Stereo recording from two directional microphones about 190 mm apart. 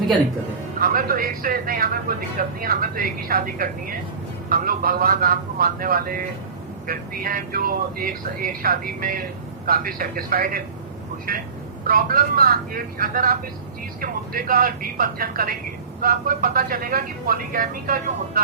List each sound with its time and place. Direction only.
0.8 s speech: 50° right (ahead or behind)
11.9 s speech: 50° right (ahead or behind)